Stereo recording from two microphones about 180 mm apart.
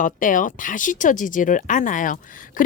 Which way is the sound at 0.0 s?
45° left (ahead or behind).